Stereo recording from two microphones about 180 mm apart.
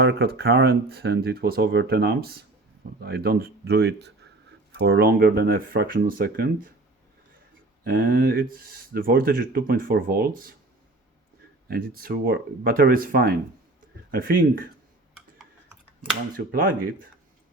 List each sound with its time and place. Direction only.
0.0 s speech: 65° right (ahead or behind)
7.9 s speech: 55° right (ahead or behind)
11.7 s speech: 55° right (ahead or behind)
16.5 s speech: 50° right (ahead or behind)